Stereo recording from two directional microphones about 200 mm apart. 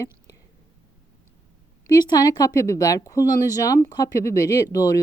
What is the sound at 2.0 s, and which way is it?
Speech, 20° left (ahead or behind).